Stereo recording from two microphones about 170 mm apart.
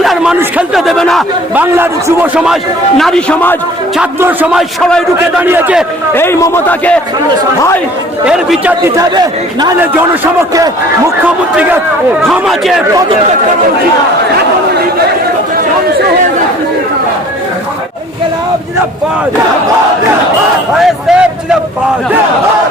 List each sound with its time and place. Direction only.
0.0 s a sound: centre (ahead or behind)
0.3 s a man's voice: 5° right (ahead or behind)
1.5 s a man's voice: 15° right (ahead or behind)
3.0 s a man's voice: 5° left (ahead or behind)
4.2 s a man's voice: 10° right (ahead or behind)
5.4 s a man's voice: 10° right (ahead or behind)
6.1 s a man's voice: 15° left (ahead or behind)
8.2 s a man's voice: 5° right (ahead or behind)
9.0 s speech: 20° right (ahead or behind)
11.5 s a man's voice: 10° right (ahead or behind)
12.2 s a man's voice: centre (ahead or behind)
20.7 s a man's voice: 5° right (ahead or behind)